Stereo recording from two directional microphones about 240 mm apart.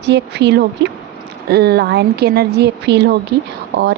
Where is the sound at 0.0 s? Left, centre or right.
Right.